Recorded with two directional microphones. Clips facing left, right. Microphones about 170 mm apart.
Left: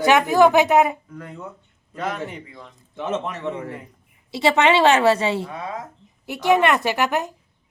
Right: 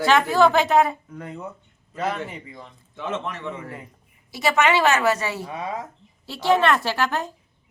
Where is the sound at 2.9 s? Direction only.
20° left (ahead or behind).